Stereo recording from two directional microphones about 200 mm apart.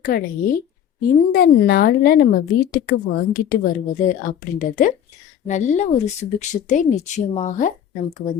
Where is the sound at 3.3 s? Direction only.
45° left (ahead or behind).